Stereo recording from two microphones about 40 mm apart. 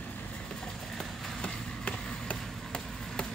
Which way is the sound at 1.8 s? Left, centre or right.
Left.